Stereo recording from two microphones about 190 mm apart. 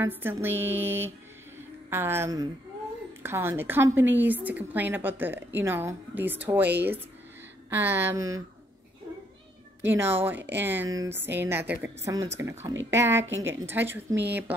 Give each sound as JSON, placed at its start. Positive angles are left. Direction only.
{"t": 0.0, "sound": "a woman's voice", "side_deg": -10}
{"t": 9.8, "sound": "a woman's voice", "side_deg": -10}